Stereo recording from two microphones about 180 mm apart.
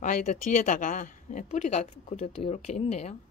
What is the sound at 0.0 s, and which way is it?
A woman's voice, 45° left (ahead or behind).